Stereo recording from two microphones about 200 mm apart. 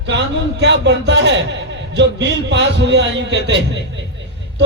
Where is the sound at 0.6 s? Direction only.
65° right (ahead or behind).